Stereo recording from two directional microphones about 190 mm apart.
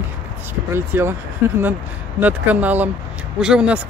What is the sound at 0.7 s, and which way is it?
Speech, 15° right (ahead or behind).